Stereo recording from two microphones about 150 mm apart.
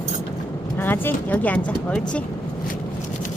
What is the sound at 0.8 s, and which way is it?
Speech, 15° left (ahead or behind).